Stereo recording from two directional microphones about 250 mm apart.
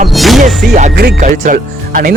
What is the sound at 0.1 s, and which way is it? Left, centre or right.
Music, centre.